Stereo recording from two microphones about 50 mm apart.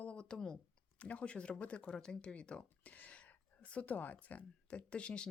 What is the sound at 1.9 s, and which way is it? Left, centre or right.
Speech, centre.